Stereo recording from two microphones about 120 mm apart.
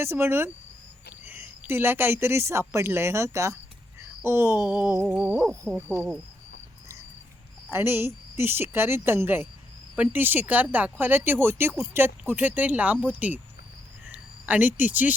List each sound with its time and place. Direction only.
0.0 s a woman's voice: 20° right (ahead or behind)
4.2 s a sound: 20° right (ahead or behind)
4.6 s a woman's voice: 20° right (ahead or behind)
7.7 s a woman's voice: 20° right (ahead or behind)
14.1 s cricket: 10° right (ahead or behind)
14.8 s speech: 15° right (ahead or behind)